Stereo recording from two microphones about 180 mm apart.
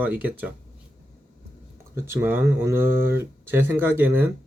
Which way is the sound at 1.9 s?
15° right (ahead or behind).